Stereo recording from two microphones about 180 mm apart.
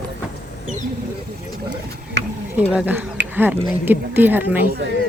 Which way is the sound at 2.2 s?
70° right (ahead or behind).